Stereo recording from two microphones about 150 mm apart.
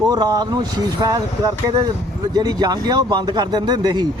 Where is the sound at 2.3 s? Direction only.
25° right (ahead or behind).